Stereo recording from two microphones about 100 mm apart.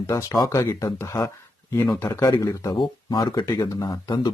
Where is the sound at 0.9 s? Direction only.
25° left (ahead or behind); by 4.3 s 40° left (ahead or behind).